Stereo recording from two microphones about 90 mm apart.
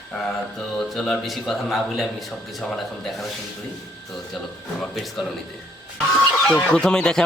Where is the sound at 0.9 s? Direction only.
5° left (ahead or behind).